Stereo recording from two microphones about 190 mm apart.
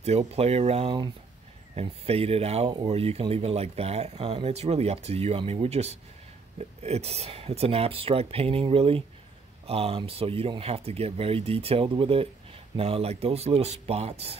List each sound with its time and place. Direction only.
0.0 s speech: 35° right (ahead or behind)